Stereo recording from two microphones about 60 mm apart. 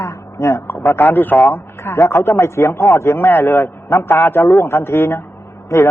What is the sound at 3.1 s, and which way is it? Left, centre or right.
A man's voice, left.